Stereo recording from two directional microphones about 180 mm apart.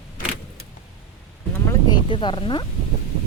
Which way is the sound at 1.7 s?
25° left (ahead or behind).